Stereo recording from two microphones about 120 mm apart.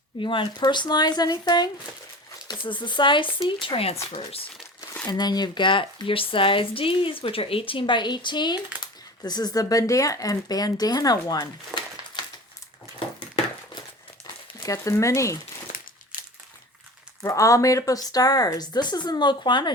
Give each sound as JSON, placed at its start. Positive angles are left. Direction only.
{"t": 0.2, "sound": "speech", "side_deg": 45}
{"t": 5.0, "sound": "speech", "side_deg": 35}
{"t": 14.6, "sound": "speech", "side_deg": 25}
{"t": 17.2, "sound": "speech", "side_deg": 25}